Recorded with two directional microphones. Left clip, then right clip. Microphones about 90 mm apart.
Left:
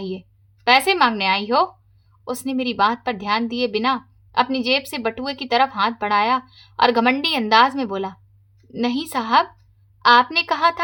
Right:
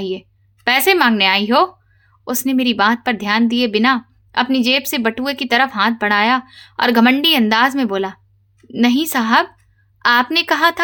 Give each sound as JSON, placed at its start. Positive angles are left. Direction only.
{"t": 0.0, "sound": "a woman's voice", "side_deg": -25}